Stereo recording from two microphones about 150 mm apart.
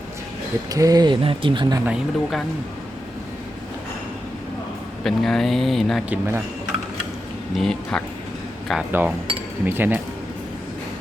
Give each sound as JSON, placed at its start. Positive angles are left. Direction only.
{"t": 0.7, "sound": "speech", "side_deg": -25}
{"t": 1.8, "sound": "speech", "side_deg": -5}
{"t": 5.0, "sound": "speech", "side_deg": 0}
{"t": 6.1, "sound": "speech", "side_deg": -15}
{"t": 7.5, "sound": "speech", "side_deg": 5}
{"t": 8.9, "sound": "speech", "side_deg": -15}